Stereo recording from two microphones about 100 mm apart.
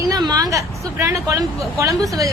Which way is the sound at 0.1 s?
40° right (ahead or behind).